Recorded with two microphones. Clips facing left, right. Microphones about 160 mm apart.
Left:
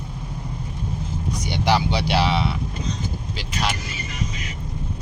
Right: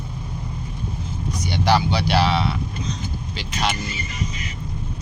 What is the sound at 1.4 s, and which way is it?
Speech, 20° left (ahead or behind).